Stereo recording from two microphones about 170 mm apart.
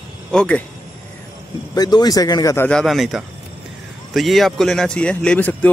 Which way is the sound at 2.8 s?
Centre (ahead or behind).